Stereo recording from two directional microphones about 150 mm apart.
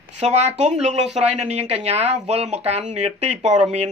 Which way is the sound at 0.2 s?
50° right (ahead or behind).